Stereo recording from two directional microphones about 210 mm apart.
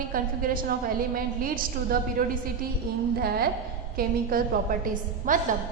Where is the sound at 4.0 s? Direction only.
45° right (ahead or behind).